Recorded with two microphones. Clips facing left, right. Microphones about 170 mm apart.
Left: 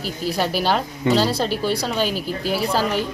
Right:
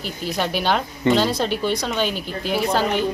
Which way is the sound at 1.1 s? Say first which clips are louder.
Even; 35° left (ahead or behind).